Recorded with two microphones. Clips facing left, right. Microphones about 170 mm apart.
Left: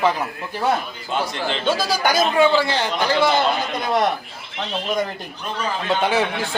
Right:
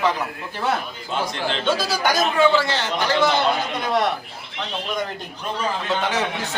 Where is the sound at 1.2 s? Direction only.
5° left (ahead or behind).